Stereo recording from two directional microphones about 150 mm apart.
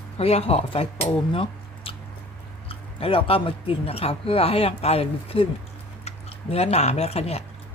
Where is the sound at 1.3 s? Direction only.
40° left (ahead or behind).